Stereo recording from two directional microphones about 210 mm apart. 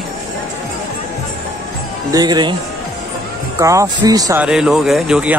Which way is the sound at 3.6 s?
15° right (ahead or behind).